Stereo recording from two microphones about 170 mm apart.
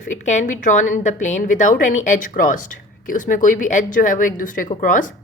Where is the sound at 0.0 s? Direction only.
45° left (ahead or behind).